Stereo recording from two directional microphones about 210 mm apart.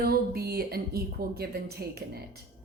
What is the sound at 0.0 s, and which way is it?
A woman's voice, 45° right (ahead or behind).